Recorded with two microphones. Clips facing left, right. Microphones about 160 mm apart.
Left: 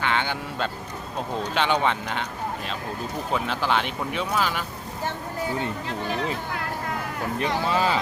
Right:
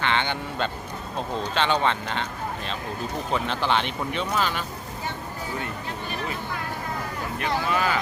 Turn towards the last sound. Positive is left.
turn(degrees=25)  # may be behind; listen again after turning